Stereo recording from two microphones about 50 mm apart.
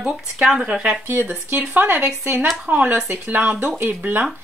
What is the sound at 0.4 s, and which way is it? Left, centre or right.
Speech, centre.